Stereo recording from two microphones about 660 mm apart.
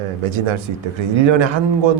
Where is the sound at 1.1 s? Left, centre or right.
Right.